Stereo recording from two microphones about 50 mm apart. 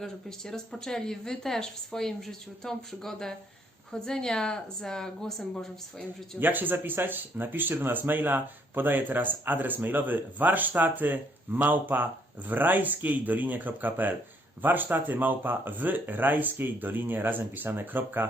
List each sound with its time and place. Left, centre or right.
0.0 s speech: centre
6.4 s speech: right